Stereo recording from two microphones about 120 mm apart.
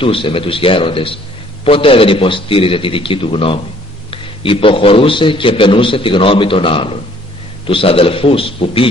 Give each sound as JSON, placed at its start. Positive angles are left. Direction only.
{"t": 0.0, "sound": "a man's voice", "side_deg": 50}